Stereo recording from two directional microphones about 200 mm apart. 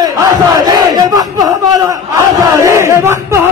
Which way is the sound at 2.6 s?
15° right (ahead or behind).